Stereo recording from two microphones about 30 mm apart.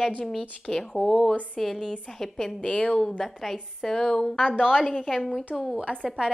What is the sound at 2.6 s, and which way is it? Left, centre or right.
Speech, left.